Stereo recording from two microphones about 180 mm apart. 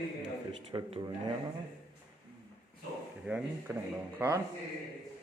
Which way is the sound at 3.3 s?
10° right (ahead or behind).